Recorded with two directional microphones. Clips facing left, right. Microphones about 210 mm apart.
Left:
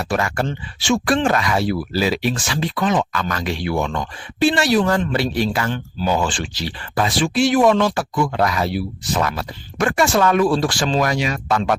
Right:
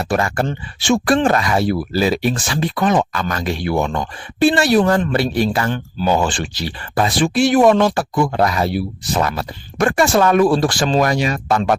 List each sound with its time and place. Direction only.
0.0 s speech: 35° right (ahead or behind)
0.4 s speech: 45° right (ahead or behind)
5.5 s speech: 40° right (ahead or behind)
7.2 s speech: 55° right (ahead or behind)
8.4 s speech: 30° right (ahead or behind)